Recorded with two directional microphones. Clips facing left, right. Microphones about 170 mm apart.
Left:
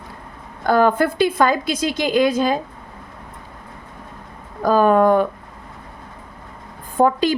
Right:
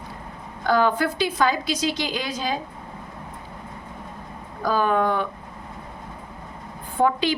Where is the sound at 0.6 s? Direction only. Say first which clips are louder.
Left 5 dB; 50° left (ahead or behind).